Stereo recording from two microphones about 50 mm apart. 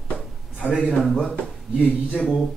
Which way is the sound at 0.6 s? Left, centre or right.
Centre.